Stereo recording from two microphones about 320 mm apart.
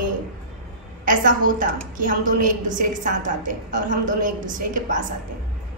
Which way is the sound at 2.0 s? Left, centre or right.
Right.